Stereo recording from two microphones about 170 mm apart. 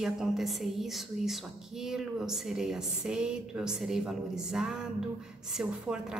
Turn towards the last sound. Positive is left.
turn(degrees=-5)  # may be behind; listen again after turning